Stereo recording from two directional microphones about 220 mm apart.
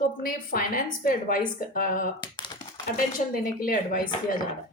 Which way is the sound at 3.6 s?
40° left (ahead or behind).